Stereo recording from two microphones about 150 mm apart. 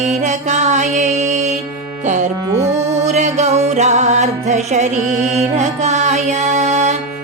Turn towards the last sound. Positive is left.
turn(degrees=-50)  # may be behind; listen again after turning